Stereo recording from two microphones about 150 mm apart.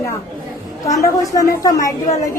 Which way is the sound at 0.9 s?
20° left (ahead or behind).